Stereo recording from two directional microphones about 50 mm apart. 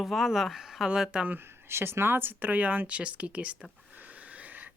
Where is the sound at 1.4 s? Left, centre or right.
Right.